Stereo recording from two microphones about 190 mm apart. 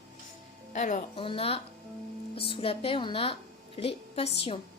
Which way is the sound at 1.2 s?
30° left (ahead or behind).